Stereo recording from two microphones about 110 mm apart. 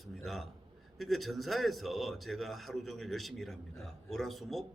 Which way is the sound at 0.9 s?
Centre (ahead or behind).